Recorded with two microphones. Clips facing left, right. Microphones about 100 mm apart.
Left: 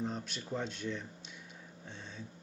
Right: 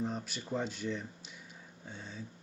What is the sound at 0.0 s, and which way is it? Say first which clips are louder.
Speech: right 1 dB; 5° right (ahead or behind).